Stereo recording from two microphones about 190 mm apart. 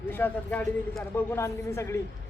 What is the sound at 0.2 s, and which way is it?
A man's voice, 10° left (ahead or behind).